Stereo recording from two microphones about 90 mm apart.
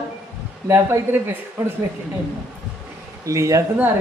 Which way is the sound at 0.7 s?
25° right (ahead or behind).